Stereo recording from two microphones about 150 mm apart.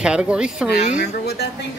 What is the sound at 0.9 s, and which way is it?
Speech, 80° left.